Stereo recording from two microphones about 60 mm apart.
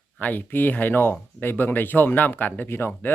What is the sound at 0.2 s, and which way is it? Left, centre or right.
Speech, left.